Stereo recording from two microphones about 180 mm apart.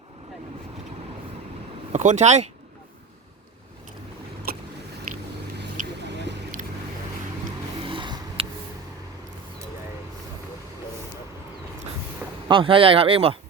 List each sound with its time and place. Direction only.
1.9 s speech: 40° right (ahead or behind)
4.5 s biting: 55° right (ahead or behind)
7.8 s a sound: 30° right (ahead or behind)
12.5 s speech: 30° right (ahead or behind)